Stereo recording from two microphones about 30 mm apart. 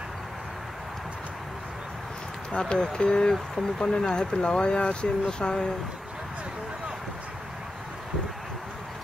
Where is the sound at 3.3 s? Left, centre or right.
Centre.